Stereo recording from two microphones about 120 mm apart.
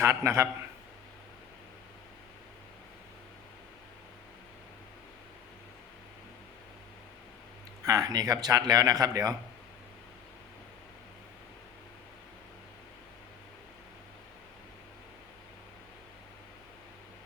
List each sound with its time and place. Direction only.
0.0 s speech: 25° right (ahead or behind)
7.9 s speech: 30° right (ahead or behind)